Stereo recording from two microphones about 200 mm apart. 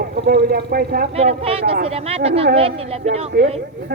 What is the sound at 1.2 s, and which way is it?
Speech, 30° right (ahead or behind).